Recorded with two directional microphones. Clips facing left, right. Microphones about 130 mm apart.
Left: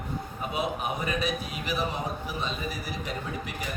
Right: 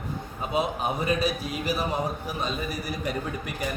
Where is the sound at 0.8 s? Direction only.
35° right (ahead or behind).